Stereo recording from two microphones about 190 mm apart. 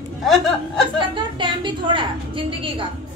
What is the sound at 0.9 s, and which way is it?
Speech, 25° right (ahead or behind).